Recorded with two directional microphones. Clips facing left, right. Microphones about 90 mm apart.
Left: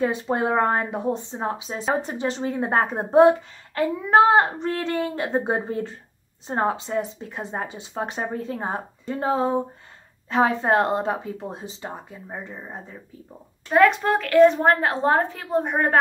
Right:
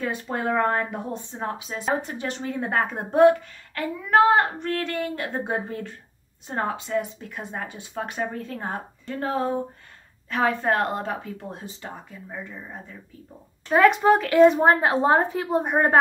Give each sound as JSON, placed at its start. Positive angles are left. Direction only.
{"t": 0.0, "sound": "a woman's voice", "side_deg": 25}
{"t": 13.7, "sound": "a woman's voice", "side_deg": -10}